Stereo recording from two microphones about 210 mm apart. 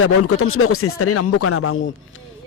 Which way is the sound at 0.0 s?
85° left.